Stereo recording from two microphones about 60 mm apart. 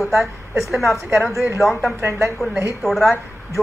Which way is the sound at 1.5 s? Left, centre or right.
Centre.